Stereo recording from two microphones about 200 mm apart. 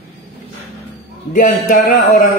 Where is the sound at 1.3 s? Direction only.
40° left (ahead or behind).